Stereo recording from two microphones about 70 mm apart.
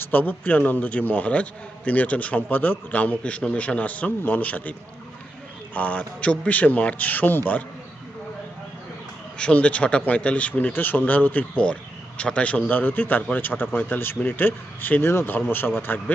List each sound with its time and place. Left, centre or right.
0.0 s a man's voice: left
5.7 s a man's voice: left
9.4 s a man's voice: centre